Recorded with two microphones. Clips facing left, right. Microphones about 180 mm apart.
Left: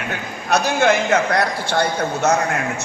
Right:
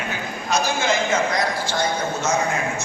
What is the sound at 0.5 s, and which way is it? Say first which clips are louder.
A man's voice: left 5 dB; 65° left (ahead or behind).